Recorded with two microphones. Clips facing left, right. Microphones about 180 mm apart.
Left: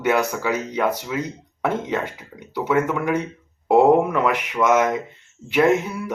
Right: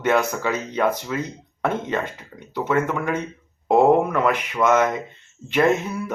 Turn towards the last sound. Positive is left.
turn(degrees=10)  # may be behind; listen again after turning